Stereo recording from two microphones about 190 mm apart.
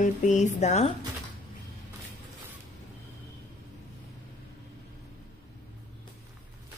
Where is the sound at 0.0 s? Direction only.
40° left (ahead or behind).